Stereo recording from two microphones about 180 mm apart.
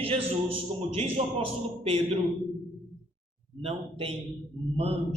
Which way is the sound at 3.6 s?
35° right (ahead or behind).